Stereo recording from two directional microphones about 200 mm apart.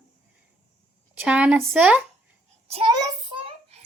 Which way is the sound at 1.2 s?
5° right (ahead or behind).